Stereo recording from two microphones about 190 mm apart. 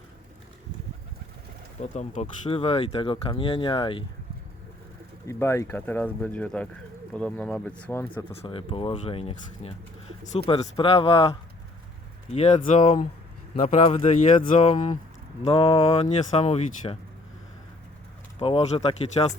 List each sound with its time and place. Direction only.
2.0 s speech: 35° left (ahead or behind)
5.3 s speech: 15° left (ahead or behind)
8.3 s speech: 30° left (ahead or behind)
18.3 s speech: 30° left (ahead or behind)